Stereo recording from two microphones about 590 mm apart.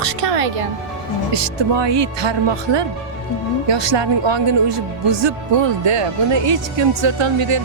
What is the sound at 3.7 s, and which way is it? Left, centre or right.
Speech, right.